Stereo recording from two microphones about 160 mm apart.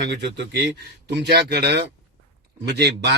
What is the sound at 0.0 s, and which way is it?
Speech, 90° right.